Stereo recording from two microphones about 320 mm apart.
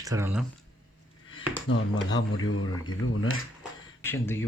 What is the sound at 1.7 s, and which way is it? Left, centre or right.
Speech, left.